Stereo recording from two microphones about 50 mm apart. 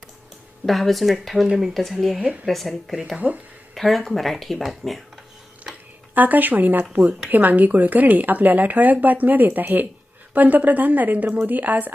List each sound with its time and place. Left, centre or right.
0.6 s speech: centre
2.2 s a woman's voice: right
2.5 s speech: centre
3.2 s a woman's voice: right
3.8 s speech: centre
6.1 s a woman's voice: right